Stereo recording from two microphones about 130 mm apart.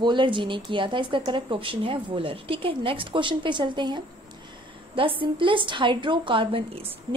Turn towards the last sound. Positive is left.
turn(degrees=-40)  # may be behind; listen again after turning